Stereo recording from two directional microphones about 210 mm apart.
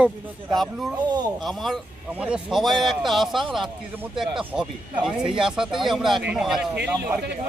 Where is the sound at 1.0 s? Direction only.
20° right (ahead or behind).